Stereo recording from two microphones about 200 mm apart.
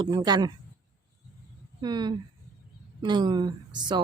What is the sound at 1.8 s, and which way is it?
Speech, 20° right (ahead or behind).